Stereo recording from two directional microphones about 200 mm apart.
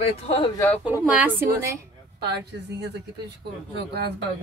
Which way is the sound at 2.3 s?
55° right (ahead or behind).